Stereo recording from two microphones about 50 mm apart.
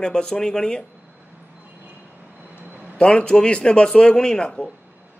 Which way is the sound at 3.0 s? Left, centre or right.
Centre.